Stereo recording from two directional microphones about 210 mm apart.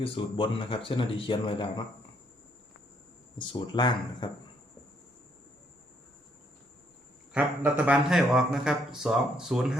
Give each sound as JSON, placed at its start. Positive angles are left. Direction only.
{"t": 0.0, "sound": "speech", "side_deg": 25}
{"t": 3.3, "sound": "speech", "side_deg": 20}
{"t": 7.3, "sound": "speech", "side_deg": -5}